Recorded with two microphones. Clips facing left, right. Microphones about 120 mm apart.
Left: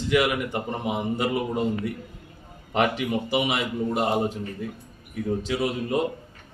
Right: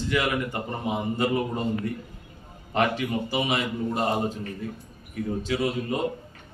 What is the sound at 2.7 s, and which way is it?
A man's voice, 15° left (ahead or behind).